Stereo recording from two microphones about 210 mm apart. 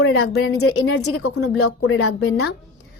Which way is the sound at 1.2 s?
90° left.